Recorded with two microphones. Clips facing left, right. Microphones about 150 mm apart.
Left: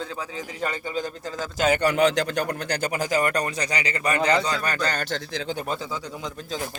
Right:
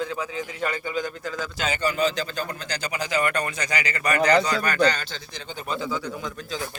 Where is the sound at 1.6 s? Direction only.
65° left (ahead or behind); by 4.8 s 30° left (ahead or behind).